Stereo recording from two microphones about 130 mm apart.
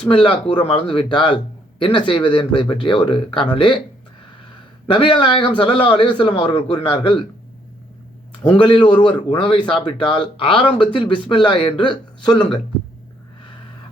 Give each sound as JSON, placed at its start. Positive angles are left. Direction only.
{"t": 0.1, "sound": "a man's voice", "side_deg": 40}
{"t": 4.9, "sound": "a man's voice", "side_deg": 40}
{"t": 8.4, "sound": "a man's voice", "side_deg": 40}